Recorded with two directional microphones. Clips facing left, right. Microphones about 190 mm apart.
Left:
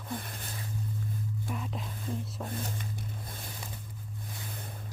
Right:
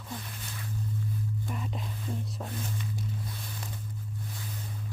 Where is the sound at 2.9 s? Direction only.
50° left (ahead or behind).